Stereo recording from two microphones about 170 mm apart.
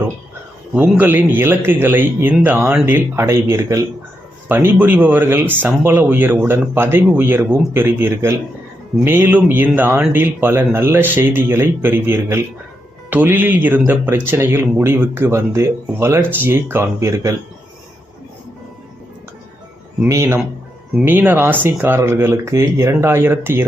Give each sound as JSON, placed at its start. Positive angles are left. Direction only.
{"t": 0.7, "sound": "speech", "side_deg": -10}
{"t": 20.1, "sound": "speech", "side_deg": -15}